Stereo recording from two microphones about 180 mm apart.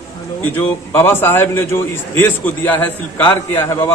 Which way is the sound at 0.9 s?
10° left (ahead or behind).